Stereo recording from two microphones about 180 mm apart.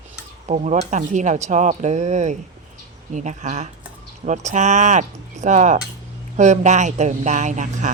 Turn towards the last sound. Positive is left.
turn(degrees=-40)  # may be behind; listen again after turning